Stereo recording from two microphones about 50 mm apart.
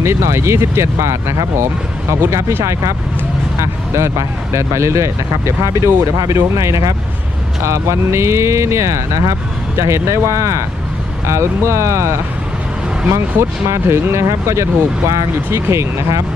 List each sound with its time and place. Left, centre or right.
0.0 s speech: right
3.9 s speech: right
9.8 s speech: right
11.2 s speech: right